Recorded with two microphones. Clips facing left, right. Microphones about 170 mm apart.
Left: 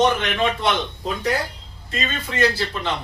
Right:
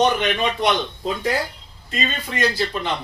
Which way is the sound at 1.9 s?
15° right (ahead or behind).